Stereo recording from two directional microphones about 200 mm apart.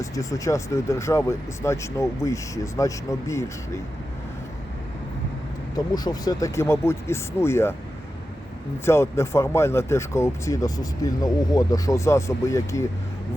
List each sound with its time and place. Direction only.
0.0 s speech: 15° left (ahead or behind)
5.7 s speech: 20° left (ahead or behind)
8.8 s speech: 15° left (ahead or behind)